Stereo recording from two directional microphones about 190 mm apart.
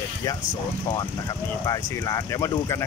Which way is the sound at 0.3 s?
15° left (ahead or behind).